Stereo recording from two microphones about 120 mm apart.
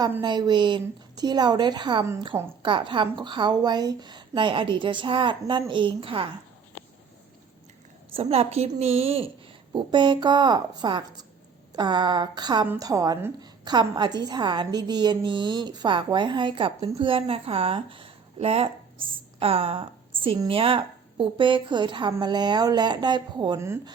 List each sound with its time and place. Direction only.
0.2 s a woman's voice: 35° right (ahead or behind)
8.1 s a woman's voice: 55° right (ahead or behind)
9.7 s a woman's voice: 40° right (ahead or behind)
23.6 s speech: 20° right (ahead or behind)